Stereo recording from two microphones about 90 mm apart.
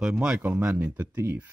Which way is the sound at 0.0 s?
5° right (ahead or behind).